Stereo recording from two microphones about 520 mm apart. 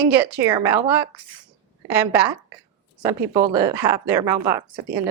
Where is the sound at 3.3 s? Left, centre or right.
Centre.